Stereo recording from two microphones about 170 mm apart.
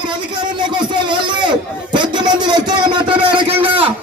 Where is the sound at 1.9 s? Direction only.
25° right (ahead or behind).